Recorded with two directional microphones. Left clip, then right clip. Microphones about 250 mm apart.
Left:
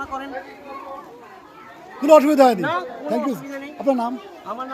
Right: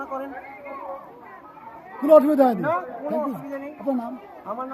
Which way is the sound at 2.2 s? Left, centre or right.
Left.